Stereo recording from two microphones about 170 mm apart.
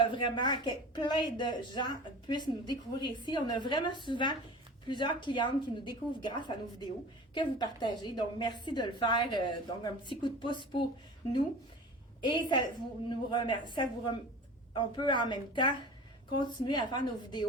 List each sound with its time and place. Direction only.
0.0 s a woman's voice: 30° left (ahead or behind)
12.2 s a woman's voice: 25° left (ahead or behind)